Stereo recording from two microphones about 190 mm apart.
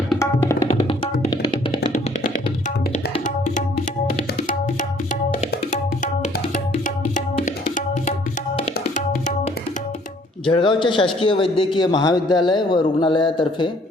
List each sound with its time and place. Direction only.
0.2 s music: 15° left (ahead or behind)
6.2 s music: 40° left (ahead or behind)
7.4 s tabla: 40° left (ahead or behind)
9.0 s music: 40° left (ahead or behind)
10.5 s a man's voice: 25° left (ahead or behind)